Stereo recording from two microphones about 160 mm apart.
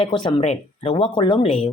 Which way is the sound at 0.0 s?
30° left (ahead or behind).